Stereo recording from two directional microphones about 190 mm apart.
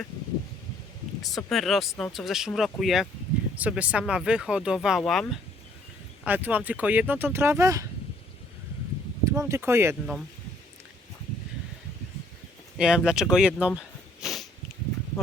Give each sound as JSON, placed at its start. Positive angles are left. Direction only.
{"t": 1.2, "sound": "speech", "side_deg": 0}
{"t": 9.2, "sound": "speech", "side_deg": -15}
{"t": 12.7, "sound": "speech", "side_deg": 0}
{"t": 13.3, "sound": "a sound", "side_deg": -5}